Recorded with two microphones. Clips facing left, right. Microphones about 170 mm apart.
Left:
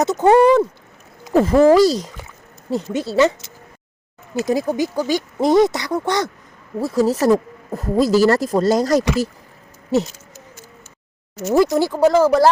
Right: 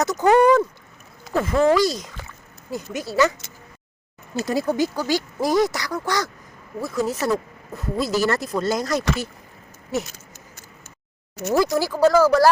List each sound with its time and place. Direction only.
0.0 s speech: 25° left (ahead or behind)
4.4 s speech: 15° left (ahead or behind); by 9.0 s 35° left (ahead or behind)
11.5 s speech: 25° left (ahead or behind)